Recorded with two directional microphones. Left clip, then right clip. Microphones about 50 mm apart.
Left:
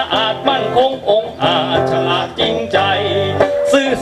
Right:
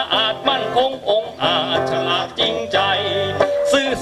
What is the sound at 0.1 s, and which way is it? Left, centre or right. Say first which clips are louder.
Music: left 1 dB; right.